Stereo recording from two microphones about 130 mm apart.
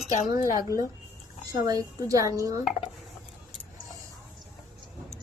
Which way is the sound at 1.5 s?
25° right (ahead or behind).